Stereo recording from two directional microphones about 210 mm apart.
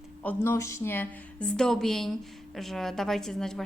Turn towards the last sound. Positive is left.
turn(degrees=0)  # may be behind; listen again after turning